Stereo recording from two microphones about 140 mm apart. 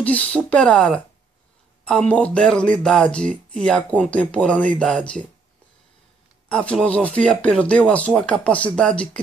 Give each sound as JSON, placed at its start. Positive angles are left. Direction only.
{"t": 0.0, "sound": "speech", "side_deg": 10}
{"t": 6.5, "sound": "speech", "side_deg": 5}